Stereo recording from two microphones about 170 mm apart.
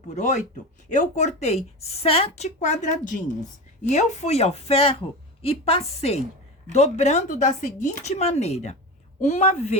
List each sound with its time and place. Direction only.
0.1 s speech: 45° left (ahead or behind)